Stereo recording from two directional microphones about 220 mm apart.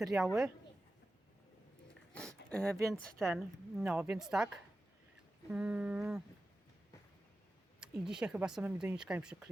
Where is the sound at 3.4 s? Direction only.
5° right (ahead or behind).